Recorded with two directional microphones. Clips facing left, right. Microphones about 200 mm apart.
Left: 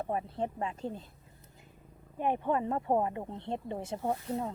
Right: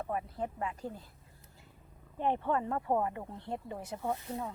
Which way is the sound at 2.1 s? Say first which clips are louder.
Left 1 dB; 10° left (ahead or behind).